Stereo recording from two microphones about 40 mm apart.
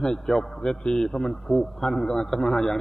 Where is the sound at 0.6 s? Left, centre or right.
Left.